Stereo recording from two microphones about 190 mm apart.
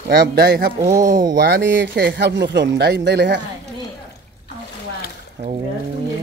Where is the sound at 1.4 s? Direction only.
65° right (ahead or behind).